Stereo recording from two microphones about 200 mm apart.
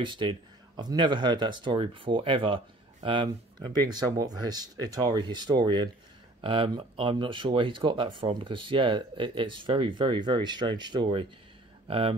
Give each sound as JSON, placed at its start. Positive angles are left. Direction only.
{"t": 0.0, "sound": "speech", "side_deg": -25}